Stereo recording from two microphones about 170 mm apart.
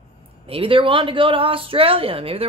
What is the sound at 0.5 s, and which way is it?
Speech, 30° right (ahead or behind).